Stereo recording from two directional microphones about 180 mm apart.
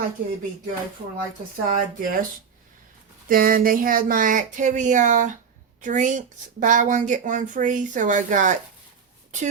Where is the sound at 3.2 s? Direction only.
50° right (ahead or behind).